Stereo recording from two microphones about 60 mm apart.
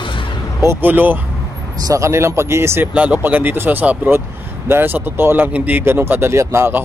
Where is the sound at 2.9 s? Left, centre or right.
Right.